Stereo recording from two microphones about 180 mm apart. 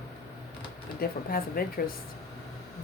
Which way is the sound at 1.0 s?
55° left (ahead or behind).